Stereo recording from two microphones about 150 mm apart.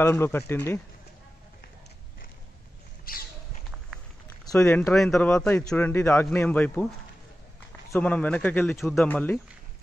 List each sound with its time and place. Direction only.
0.0 s a man's voice: 15° left (ahead or behind)
3.1 s a sound: 75° left (ahead or behind)
4.6 s a man's voice: 5° left (ahead or behind)
7.9 s a man's voice: 10° left (ahead or behind)
9.1 s a man's voice: 10° left (ahead or behind)